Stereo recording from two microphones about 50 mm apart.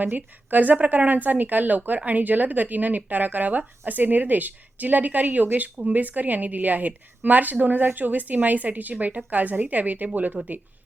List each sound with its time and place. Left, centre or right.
0.2 s speech: right